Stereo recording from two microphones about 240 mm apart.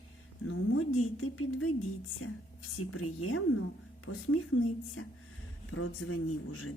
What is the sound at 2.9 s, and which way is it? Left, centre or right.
Speech, left.